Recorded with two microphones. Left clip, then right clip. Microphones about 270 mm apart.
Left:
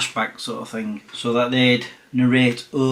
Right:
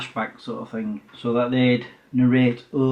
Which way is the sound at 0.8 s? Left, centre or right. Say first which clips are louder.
Left 3 dB; centre.